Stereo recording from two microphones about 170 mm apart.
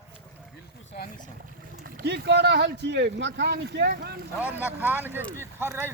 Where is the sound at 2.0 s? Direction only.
85° right; by 4.2 s 70° right (ahead or behind).